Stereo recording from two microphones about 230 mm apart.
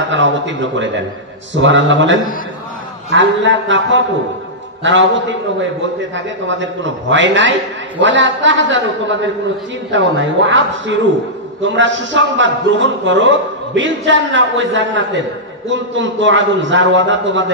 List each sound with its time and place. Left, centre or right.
0.1 s a man's voice: right